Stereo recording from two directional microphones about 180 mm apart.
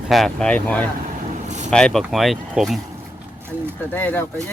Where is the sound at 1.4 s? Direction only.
40° right (ahead or behind).